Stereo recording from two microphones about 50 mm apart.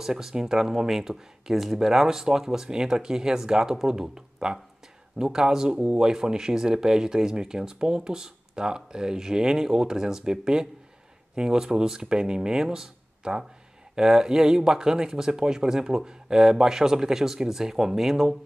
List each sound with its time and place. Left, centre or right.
0.0 s speech: centre